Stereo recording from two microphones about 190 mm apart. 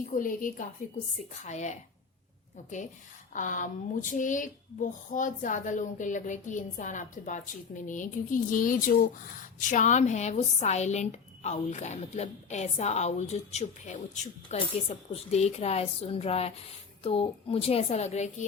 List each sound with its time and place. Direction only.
0.0 s speech: 45° left (ahead or behind)
3.3 s speech: 45° left (ahead or behind)